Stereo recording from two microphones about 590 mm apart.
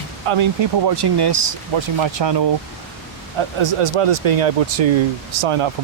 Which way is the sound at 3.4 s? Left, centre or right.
Right.